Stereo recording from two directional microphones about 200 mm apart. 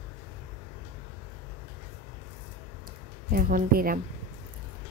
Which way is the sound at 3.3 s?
45° right (ahead or behind).